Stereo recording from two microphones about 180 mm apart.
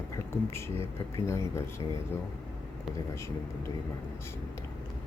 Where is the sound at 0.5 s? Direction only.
15° left (ahead or behind).